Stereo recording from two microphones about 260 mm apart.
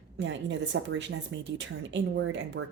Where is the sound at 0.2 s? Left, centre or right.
Right.